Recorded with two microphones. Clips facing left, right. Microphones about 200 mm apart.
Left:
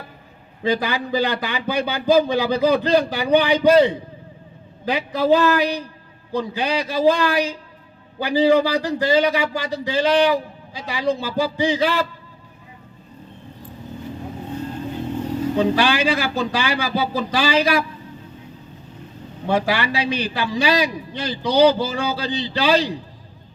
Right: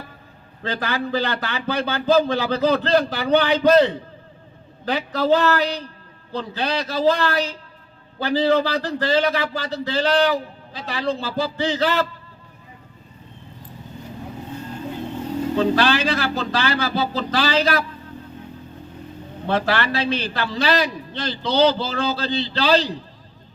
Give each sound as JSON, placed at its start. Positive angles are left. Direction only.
{"t": 0.6, "sound": "a man's voice", "side_deg": 15}
{"t": 15.5, "sound": "a man's voice", "side_deg": 10}
{"t": 19.5, "sound": "a man's voice", "side_deg": 10}